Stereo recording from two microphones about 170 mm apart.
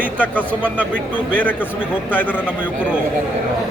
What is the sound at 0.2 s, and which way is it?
Speech, 10° left (ahead or behind).